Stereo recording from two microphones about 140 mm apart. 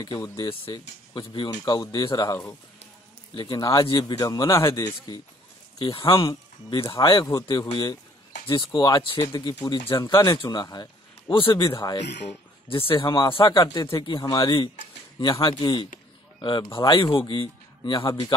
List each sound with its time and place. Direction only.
0.0 s speech: 30° left (ahead or behind)
4.2 s speech: 25° left (ahead or behind)
8.5 s speech: 35° left (ahead or behind)